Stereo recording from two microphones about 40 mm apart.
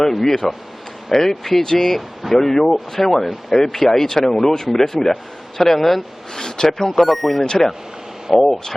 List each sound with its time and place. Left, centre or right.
0.0 s speech: centre
2.0 s speech: centre
2.4 s speech: centre
7.4 s speech: centre